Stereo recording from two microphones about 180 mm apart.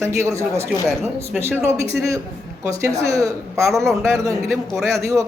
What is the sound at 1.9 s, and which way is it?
A man's voice, 15° right (ahead or behind).